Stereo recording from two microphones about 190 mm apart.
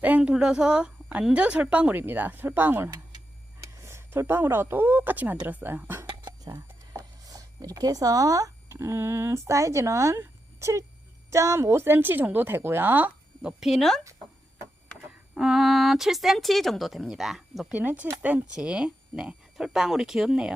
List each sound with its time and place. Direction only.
0.0 s a woman's voice: 5° right (ahead or behind)
6.1 s a woman's voice: 20° right (ahead or behind); by 14.0 s centre (ahead or behind)
15.4 s speech: centre (ahead or behind)